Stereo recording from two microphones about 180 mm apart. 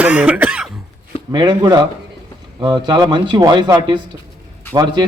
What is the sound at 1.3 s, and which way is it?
A man's voice, 25° right (ahead or behind).